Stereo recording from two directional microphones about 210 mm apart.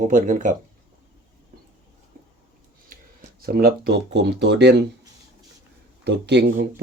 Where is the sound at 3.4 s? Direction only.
45° right (ahead or behind).